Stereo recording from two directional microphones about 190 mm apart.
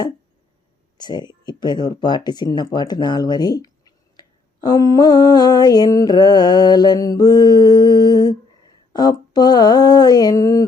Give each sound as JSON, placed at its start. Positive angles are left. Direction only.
{"t": 0.9, "sound": "speech", "side_deg": 20}